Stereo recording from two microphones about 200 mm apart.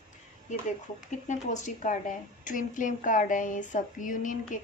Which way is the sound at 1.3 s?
40° left (ahead or behind).